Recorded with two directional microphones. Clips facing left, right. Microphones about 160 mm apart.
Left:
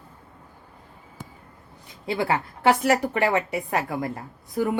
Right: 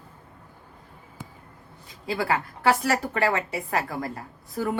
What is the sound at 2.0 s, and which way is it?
A woman's voice, 25° left (ahead or behind).